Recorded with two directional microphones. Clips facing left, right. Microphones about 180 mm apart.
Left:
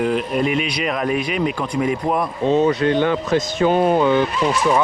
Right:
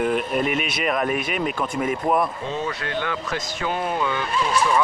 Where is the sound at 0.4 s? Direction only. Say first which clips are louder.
Left 3 dB; 50° right (ahead or behind).